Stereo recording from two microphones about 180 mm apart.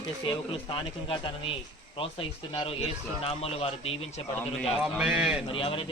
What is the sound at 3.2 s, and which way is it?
Speech, 35° left (ahead or behind).